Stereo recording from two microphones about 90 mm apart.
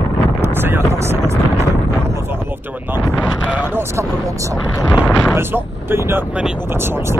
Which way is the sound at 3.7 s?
30° right (ahead or behind).